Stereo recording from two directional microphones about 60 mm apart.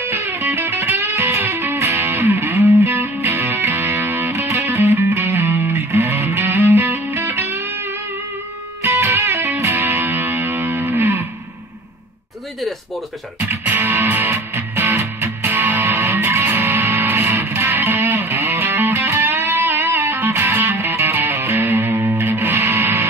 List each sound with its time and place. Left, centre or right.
0.0 s music: right
13.5 s music: right